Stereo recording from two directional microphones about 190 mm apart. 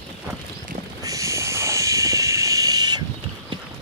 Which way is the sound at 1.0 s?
15° right (ahead or behind).